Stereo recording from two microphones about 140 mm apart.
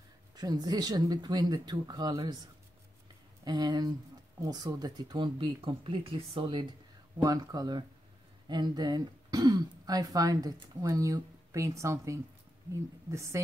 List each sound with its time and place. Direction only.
0.4 s speech: 30° right (ahead or behind)